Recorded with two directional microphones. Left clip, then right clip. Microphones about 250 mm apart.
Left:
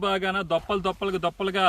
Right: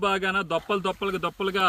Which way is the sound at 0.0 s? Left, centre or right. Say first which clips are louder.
Right 1 dB; centre.